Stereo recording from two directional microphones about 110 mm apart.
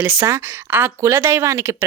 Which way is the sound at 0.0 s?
20° right (ahead or behind).